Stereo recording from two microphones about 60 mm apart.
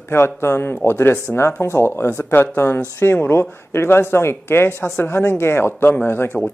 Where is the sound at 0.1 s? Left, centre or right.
Left.